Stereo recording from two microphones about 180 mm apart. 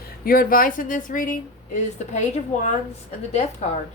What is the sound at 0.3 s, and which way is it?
A woman's voice, 55° left (ahead or behind).